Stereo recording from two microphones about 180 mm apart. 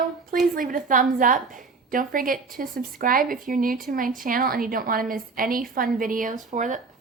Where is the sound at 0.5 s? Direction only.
50° right (ahead or behind).